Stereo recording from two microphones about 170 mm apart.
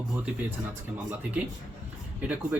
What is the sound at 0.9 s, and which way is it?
Speech, 10° right (ahead or behind).